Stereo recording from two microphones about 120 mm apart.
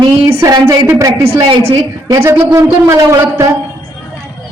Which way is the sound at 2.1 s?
20° right (ahead or behind).